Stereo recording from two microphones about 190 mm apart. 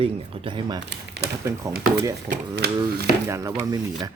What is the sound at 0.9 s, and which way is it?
Speech, 60° right (ahead or behind).